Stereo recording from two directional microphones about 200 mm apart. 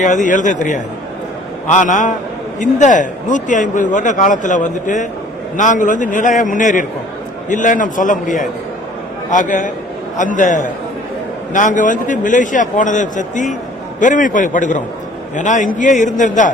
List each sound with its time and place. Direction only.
0.0 s a man's voice: 40° left (ahead or behind)